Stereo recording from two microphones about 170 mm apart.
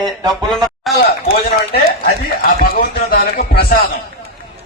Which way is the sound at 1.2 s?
60° left (ahead or behind).